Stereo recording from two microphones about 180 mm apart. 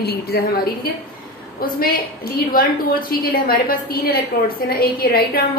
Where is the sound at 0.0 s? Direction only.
60° left (ahead or behind).